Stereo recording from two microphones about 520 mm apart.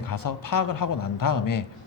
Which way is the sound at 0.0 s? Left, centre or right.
Left.